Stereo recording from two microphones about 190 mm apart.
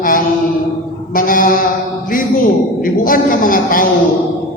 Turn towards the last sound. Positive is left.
turn(degrees=45)  # may be behind; listen again after turning